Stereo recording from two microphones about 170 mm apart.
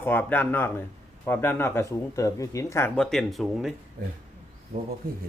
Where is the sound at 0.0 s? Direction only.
10° left (ahead or behind).